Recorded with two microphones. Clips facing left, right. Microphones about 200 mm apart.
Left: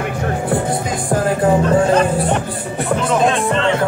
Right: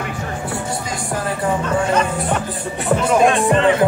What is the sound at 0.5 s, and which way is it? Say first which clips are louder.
Music: left 6 dB; 55° left (ahead or behind).